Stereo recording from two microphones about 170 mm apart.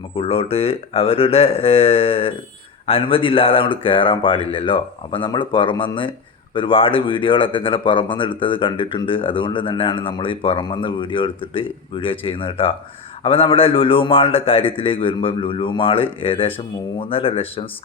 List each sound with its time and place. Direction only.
0.2 s a man's voice: 35° left (ahead or behind)